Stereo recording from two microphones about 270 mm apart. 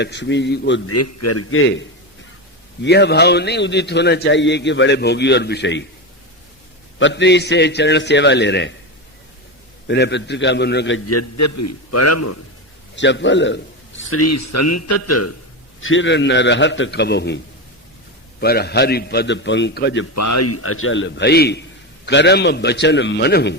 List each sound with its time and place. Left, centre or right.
0.0 s a man's voice: left
0.9 s a man's voice: left
7.0 s a man's voice: left
9.8 s a man's voice: left
13.0 s a man's voice: left
14.0 s a man's voice: left
15.8 s a man's voice: left
20.1 s a man's voice: left